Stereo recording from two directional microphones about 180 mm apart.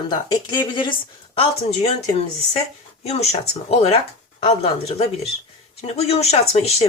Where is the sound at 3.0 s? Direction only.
35° left (ahead or behind).